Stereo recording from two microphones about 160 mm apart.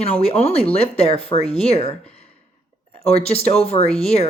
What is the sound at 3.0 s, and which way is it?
Speech, 40° left (ahead or behind).